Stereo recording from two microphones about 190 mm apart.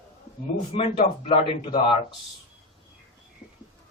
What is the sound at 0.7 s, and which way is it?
Speech, 30° left (ahead or behind).